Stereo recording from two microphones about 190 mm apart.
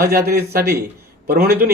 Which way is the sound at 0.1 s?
55° right (ahead or behind).